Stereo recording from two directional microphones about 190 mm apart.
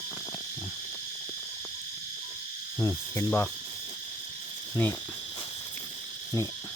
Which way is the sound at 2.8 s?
10° left (ahead or behind).